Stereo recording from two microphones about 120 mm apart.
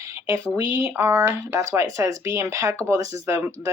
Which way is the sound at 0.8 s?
20° right (ahead or behind).